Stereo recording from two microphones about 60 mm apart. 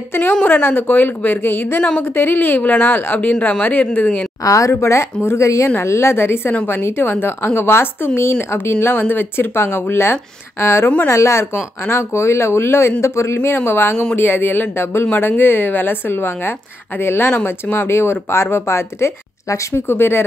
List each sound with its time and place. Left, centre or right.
0.1 s speech: left
1.8 s speech: left
4.5 s speech: left